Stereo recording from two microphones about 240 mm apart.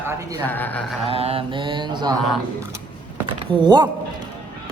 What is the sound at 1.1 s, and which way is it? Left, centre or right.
Mantra, right.